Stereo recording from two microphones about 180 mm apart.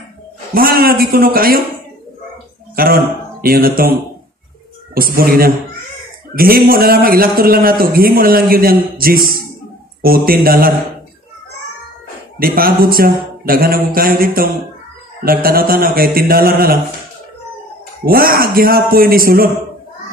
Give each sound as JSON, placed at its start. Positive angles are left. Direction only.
{"t": 0.6, "sound": "a man's voice", "side_deg": -55}
{"t": 2.7, "sound": "speech", "side_deg": -55}
{"t": 4.9, "sound": "a man's voice", "side_deg": -55}
{"t": 12.4, "sound": "a man's voice", "side_deg": -55}
{"t": 18.0, "sound": "a man's voice", "side_deg": -55}